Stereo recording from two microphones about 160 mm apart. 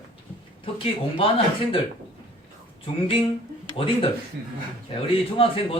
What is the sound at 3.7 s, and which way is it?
Speech, 35° left (ahead or behind).